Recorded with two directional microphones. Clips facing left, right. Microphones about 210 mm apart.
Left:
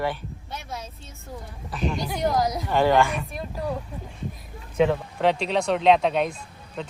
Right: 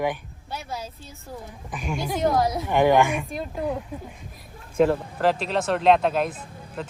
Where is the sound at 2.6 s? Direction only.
15° right (ahead or behind).